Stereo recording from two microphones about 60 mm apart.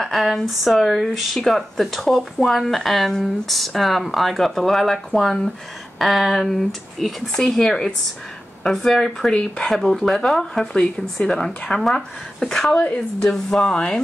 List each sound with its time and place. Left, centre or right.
0.0 s speech: centre
12.8 s speech: left
13.3 s speech: centre